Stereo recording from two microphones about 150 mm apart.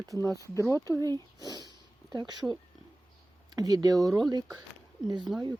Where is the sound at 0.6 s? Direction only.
20° left (ahead or behind).